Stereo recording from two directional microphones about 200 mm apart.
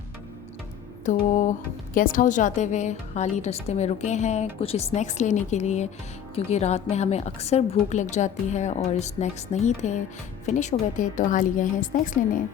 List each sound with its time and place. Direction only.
1.0 s speech: 40° left (ahead or behind)